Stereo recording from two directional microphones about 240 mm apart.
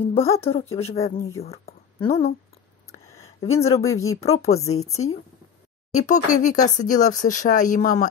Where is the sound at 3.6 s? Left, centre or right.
Centre.